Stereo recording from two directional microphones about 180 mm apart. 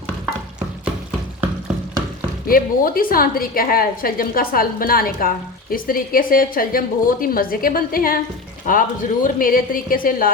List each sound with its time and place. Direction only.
2.5 s a woman's voice: 55° left (ahead or behind)